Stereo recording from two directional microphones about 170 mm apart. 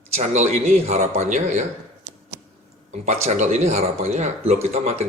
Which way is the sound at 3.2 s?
45° right (ahead or behind).